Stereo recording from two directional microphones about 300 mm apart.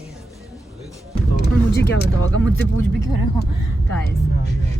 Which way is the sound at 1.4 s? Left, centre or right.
Left.